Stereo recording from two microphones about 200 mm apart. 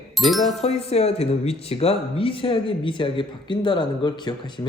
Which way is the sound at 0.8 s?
30° left (ahead or behind).